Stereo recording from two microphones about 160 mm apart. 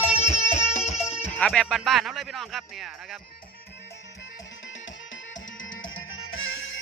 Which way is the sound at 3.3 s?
70° left (ahead or behind).